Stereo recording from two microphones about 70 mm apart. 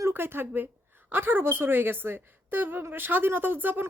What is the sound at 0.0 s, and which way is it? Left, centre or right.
A woman's voice, right.